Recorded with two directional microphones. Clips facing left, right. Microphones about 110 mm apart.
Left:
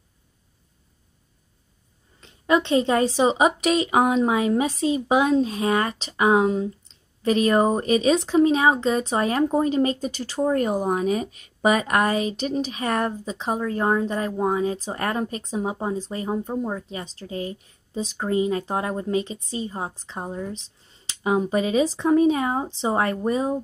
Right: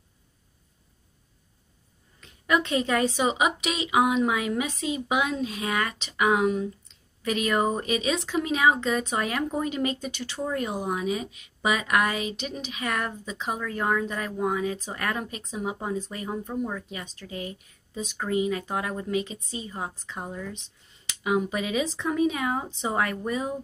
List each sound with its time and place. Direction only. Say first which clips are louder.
2.1 s a woman's voice: left 4 dB; 30° left (ahead or behind)